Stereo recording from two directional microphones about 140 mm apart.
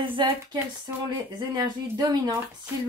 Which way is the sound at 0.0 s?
35° right (ahead or behind).